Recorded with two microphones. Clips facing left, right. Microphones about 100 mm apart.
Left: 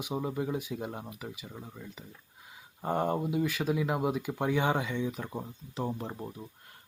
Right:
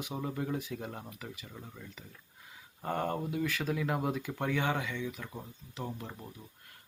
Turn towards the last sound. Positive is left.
turn(degrees=30)  # may be behind; listen again after turning